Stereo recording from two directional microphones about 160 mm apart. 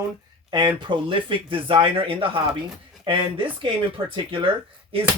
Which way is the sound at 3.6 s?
30° right (ahead or behind).